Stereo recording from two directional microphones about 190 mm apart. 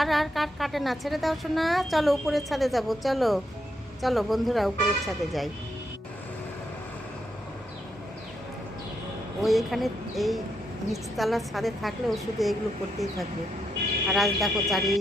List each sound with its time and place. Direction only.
0.0 s a woman's voice: centre (ahead or behind)
9.4 s a woman's voice: centre (ahead or behind)